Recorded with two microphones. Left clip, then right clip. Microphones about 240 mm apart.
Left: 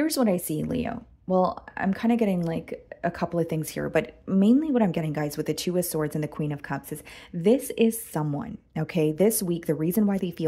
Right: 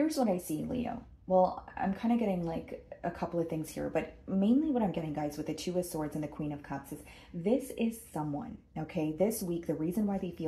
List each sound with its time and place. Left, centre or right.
0.0 s speech: left